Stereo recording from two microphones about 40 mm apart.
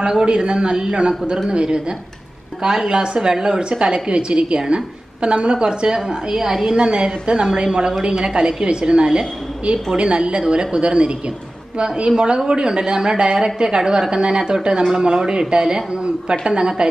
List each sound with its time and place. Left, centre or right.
0.1 s a woman's voice: centre